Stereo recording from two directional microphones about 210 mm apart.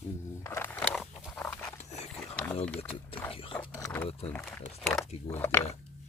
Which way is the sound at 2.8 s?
30° left (ahead or behind).